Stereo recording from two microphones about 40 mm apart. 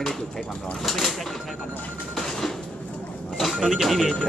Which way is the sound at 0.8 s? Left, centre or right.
Centre.